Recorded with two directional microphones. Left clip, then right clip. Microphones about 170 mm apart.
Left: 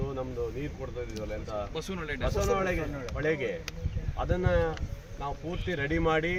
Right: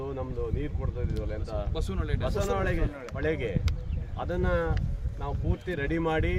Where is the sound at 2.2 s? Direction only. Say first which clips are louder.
Left 1 dB; 20° right (ahead or behind).